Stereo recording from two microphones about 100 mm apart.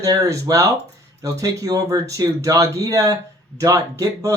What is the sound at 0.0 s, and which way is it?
Speech, 35° right (ahead or behind).